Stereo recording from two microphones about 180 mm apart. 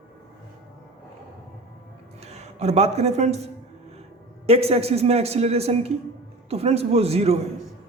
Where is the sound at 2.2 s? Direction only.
35° right (ahead or behind).